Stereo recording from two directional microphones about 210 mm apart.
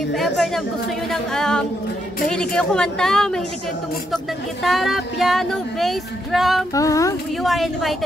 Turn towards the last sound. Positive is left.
turn(degrees=0)  # may be behind; listen again after turning